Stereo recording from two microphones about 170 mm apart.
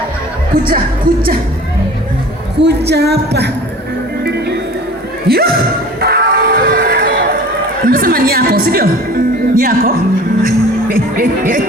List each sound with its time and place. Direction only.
0.5 s a woman's voice: 55° right (ahead or behind)
2.6 s speech: 80° right
4.2 s music: 70° right (ahead or behind)
5.3 s a woman's voice: 65° right (ahead or behind)
6.0 s music: 65° right (ahead or behind)
7.9 s a woman's voice: 60° right (ahead or behind)